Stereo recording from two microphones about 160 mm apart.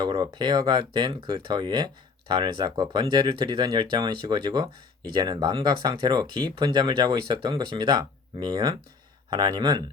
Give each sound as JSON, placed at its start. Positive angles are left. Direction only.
{"t": 0.0, "sound": "speech", "side_deg": -30}